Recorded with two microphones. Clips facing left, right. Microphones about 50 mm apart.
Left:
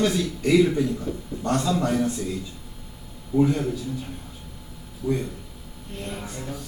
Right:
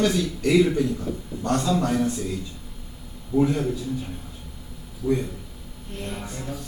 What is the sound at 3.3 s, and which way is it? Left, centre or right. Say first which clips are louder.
Speech: even; centre.